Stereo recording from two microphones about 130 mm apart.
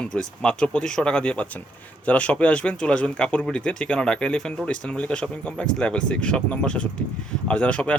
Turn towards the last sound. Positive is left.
turn(degrees=10)  # may be behind; listen again after turning